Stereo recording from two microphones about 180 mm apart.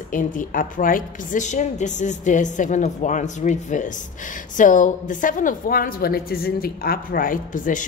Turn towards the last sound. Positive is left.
turn(degrees=45)  # may be behind; listen again after turning